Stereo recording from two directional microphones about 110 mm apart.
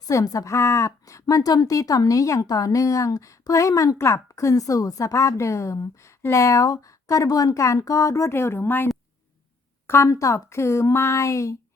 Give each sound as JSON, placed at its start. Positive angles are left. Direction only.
{"t": 0.1, "sound": "a woman's voice", "side_deg": 30}